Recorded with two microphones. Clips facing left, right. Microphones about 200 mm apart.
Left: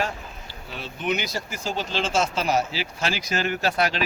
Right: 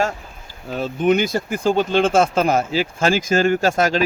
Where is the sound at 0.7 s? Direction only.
45° right (ahead or behind).